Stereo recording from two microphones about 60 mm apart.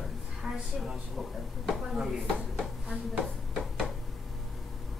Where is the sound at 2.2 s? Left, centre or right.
Centre.